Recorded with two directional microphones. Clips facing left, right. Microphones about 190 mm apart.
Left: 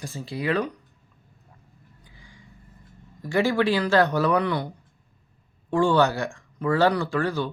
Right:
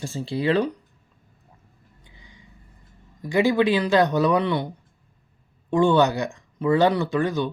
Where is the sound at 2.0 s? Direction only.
20° right (ahead or behind).